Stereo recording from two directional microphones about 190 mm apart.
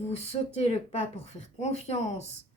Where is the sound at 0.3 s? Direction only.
30° left (ahead or behind).